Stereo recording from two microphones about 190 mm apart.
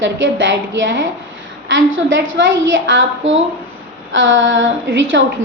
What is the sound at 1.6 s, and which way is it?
A woman's voice, 85° right.